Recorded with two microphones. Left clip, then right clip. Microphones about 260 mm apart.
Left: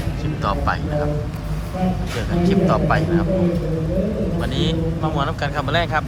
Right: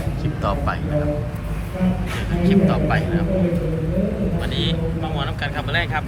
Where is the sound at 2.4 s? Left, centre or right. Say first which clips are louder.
Left 1 dB; centre.